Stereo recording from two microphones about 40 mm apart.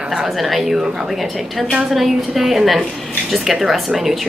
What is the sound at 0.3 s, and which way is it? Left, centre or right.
A woman's voice, centre.